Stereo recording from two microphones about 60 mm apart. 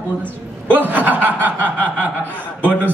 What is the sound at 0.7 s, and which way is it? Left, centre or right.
Speech, right.